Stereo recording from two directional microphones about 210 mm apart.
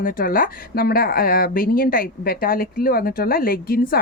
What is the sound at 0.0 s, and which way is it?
Speech, 40° left (ahead or behind).